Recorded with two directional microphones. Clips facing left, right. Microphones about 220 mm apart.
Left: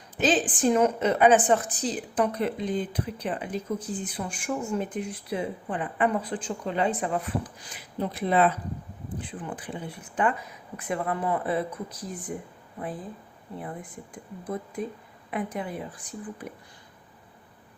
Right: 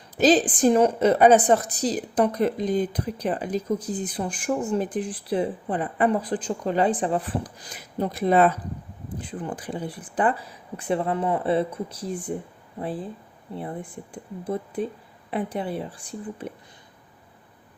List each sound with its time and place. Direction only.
0.2 s a woman's voice: 35° right (ahead or behind)